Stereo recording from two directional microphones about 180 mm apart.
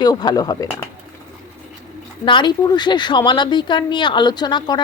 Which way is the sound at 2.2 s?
25° left (ahead or behind).